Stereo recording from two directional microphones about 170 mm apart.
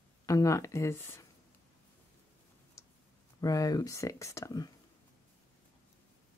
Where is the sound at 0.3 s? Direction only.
20° left (ahead or behind).